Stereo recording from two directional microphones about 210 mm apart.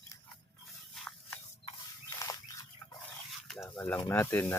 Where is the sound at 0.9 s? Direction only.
5° left (ahead or behind).